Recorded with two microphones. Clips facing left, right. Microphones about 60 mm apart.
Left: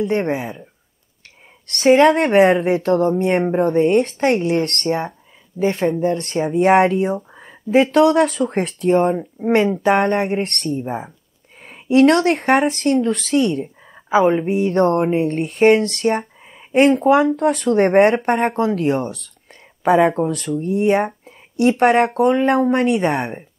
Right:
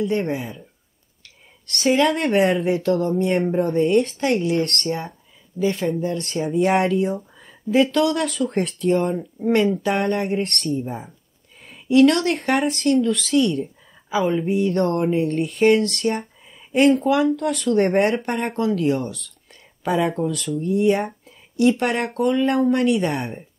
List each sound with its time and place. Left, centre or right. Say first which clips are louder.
0.0 s speech: left 3 dB; left
1.7 s speech: left 6 dB; left
7.3 s speech: left 3 dB; left
9.1 s speech: left 3 dB; left
9.6 s speech: left 6 dB; left
11.6 s a sound: left 2 dB; left
12.4 s speech: left 5 dB; left
13.0 s speech: left 1 dB; left
14.0 s speech: left 6 dB; left
14.5 s speech: left 4 dB; left
21.5 s speech: left 1 dB; left
21.8 s speech: left 7 dB; left